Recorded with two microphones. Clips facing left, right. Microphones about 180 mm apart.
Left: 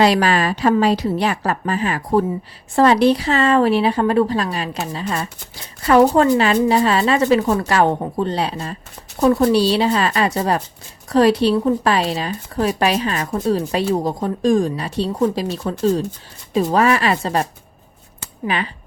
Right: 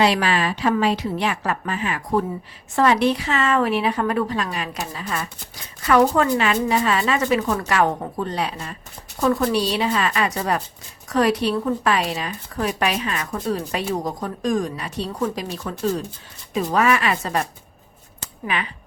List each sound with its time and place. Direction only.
0.0 s a woman's voice: 40° left (ahead or behind)